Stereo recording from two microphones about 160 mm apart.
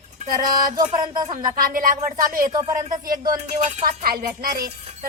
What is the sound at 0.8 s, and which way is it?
Speech, 25° right (ahead or behind).